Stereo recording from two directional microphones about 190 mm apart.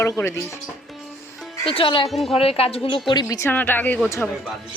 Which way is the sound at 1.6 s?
30° left (ahead or behind).